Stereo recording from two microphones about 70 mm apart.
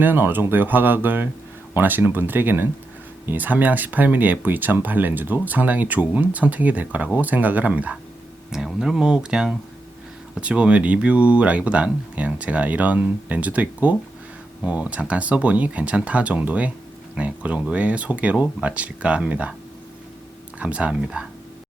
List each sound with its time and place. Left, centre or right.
0.0 s speech: right
8.5 s speech: centre
20.6 s speech: centre